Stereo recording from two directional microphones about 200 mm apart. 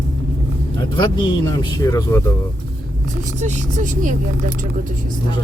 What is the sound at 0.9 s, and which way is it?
Speech, 20° left (ahead or behind).